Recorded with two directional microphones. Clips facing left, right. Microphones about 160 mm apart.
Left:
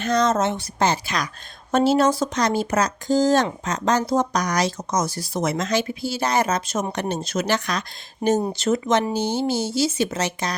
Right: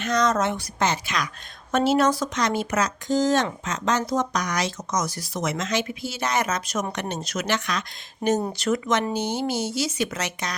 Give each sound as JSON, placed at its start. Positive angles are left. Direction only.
{"t": 0.0, "sound": "speech", "side_deg": 30}